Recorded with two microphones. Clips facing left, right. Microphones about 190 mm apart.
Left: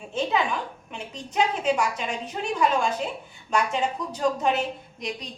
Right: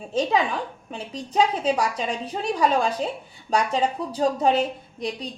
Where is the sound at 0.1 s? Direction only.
35° right (ahead or behind).